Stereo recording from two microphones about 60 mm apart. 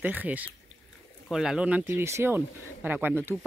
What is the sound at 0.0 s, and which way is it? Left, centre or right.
Speech, right.